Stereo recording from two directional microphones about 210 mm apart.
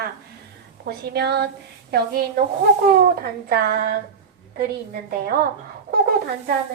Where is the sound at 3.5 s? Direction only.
45° right (ahead or behind).